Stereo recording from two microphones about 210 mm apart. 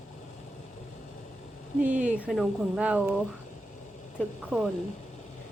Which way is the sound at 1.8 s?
5° right (ahead or behind).